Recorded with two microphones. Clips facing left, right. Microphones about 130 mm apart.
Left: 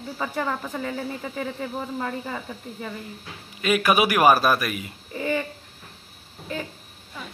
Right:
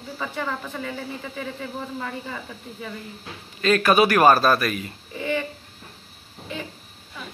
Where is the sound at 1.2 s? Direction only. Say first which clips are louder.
Left 2 dB; 20° left (ahead or behind).